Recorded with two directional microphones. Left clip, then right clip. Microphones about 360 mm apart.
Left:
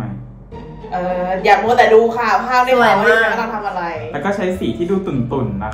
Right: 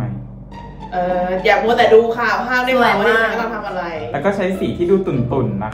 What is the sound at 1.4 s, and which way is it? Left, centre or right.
A woman's voice, centre.